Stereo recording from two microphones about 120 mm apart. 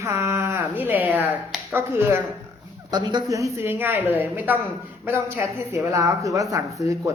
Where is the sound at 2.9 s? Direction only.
35° right (ahead or behind).